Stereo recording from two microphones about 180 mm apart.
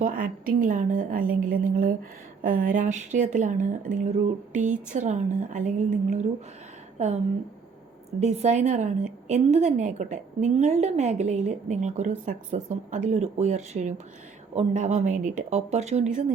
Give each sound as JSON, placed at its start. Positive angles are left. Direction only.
{"t": 0.0, "sound": "speech", "side_deg": -50}
{"t": 8.2, "sound": "a woman's voice", "side_deg": -40}